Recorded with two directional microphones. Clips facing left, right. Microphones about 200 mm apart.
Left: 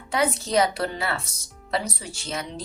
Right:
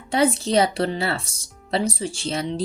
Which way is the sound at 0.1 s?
30° right (ahead or behind).